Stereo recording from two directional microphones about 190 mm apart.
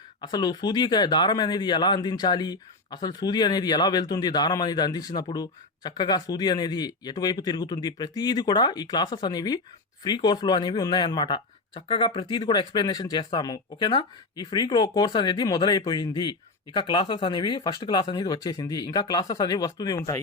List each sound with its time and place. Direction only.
0.2 s speech: 20° left (ahead or behind)